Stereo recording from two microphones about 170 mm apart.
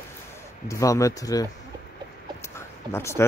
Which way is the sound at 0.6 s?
20° left (ahead or behind).